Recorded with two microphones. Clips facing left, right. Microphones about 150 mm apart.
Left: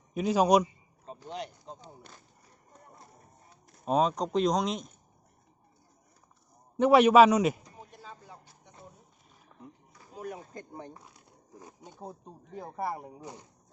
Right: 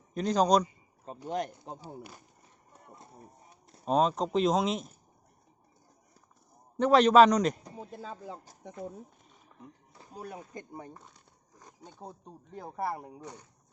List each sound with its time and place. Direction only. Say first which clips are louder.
0.1 s a man's voice: left 1 dB; 5° left (ahead or behind)
1.3 s speech: right 6 dB; 50° right (ahead or behind)
1.8 s speech: right 6 dB; 10° right (ahead or behind)
3.8 s speech: even; centre (ahead or behind)
6.7 s a man's voice: left 1 dB; 10° left (ahead or behind)
9.5 s music: left 1 dB; centre (ahead or behind)
9.9 s a sound: left 3 dB; 30° right (ahead or behind)
10.5 s speech: even; 20° right (ahead or behind)
10.9 s speech: left 1 dB; 5° left (ahead or behind)